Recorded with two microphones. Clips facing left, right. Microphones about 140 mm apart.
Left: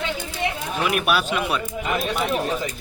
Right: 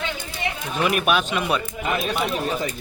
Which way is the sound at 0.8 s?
Centre (ahead or behind).